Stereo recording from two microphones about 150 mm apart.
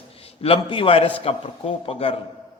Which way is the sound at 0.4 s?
40° left (ahead or behind).